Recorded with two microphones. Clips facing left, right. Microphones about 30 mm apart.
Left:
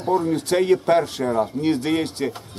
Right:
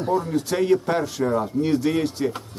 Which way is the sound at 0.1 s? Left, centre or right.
Left.